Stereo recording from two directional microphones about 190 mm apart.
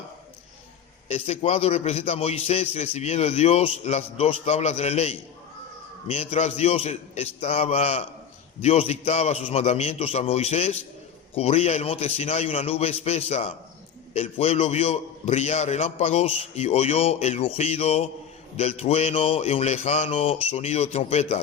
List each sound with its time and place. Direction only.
1.0 s a man's voice: 35° left (ahead or behind)